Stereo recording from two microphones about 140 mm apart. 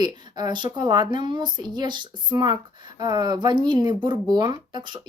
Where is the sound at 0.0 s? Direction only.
30° right (ahead or behind).